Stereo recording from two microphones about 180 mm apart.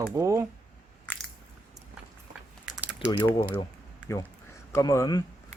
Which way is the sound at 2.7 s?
5° right (ahead or behind).